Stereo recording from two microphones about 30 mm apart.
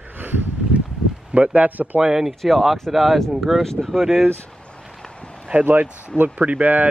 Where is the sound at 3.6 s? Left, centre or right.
Centre.